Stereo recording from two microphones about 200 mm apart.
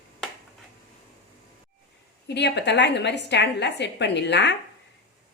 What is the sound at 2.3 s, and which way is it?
A woman's voice, 60° left (ahead or behind).